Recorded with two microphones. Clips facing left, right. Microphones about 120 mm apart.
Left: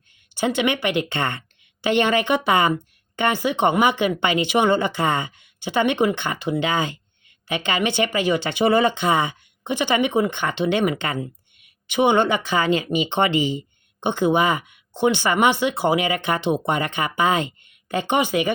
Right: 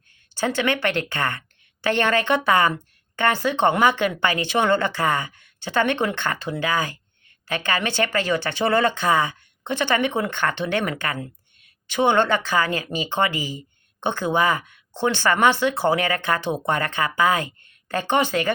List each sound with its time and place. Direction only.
0.3 s speech: 15° left (ahead or behind)